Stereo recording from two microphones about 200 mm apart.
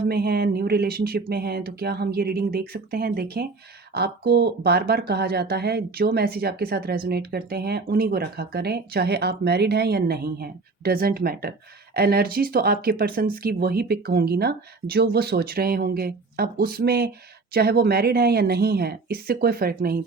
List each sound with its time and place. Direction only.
0.1 s speech: 50° right (ahead or behind)